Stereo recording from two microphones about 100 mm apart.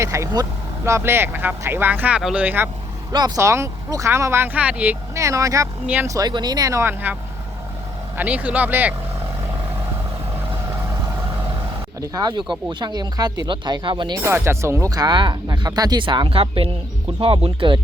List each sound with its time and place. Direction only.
0.0 s speech: 30° right (ahead or behind)
3.1 s speech: 45° right (ahead or behind)
3.3 s speech: 30° right (ahead or behind); by 4.9 s 15° right (ahead or behind)
5.1 s speech: 30° right (ahead or behind)
5.8 s speech: 15° right (ahead or behind)
6.1 s speech: 40° right (ahead or behind)
8.1 s speech: 15° right (ahead or behind)
10.7 s vehicle: 25° right (ahead or behind)
11.9 s speech: 35° right (ahead or behind)
12.4 s speech: 50° right (ahead or behind)
14.2 s speech: 25° right (ahead or behind); by 17.7 s 60° right (ahead or behind)